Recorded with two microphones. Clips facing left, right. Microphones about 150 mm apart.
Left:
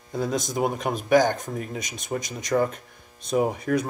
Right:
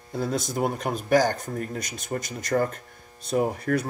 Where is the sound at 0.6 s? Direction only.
5° left (ahead or behind).